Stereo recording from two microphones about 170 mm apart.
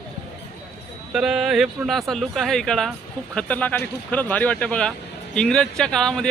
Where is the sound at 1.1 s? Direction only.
5° right (ahead or behind).